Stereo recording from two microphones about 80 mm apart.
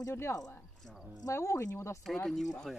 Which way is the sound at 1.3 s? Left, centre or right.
Left.